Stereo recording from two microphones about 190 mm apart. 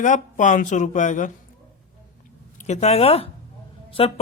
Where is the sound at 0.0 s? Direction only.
40° left (ahead or behind).